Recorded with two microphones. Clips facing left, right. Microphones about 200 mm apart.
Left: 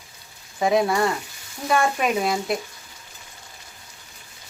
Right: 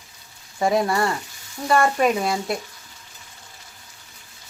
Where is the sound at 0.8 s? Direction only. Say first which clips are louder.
Left 1 dB; centre (ahead or behind).